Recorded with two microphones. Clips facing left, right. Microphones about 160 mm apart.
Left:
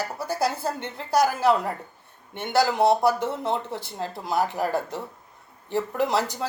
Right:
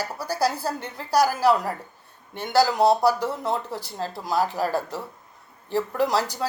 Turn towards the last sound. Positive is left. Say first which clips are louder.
# right 1 dB
turn(degrees=20)  # may be behind; listen again after turning